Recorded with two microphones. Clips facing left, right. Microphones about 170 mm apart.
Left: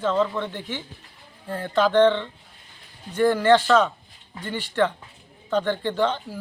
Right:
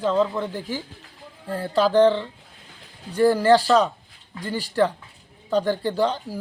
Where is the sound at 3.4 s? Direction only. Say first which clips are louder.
Left 2 dB; 35° right (ahead or behind).